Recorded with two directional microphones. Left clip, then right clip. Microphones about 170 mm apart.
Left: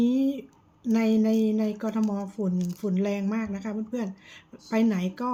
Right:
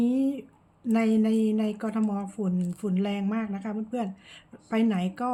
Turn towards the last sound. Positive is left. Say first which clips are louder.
# even
turn(degrees=-15)  # may be behind; listen again after turning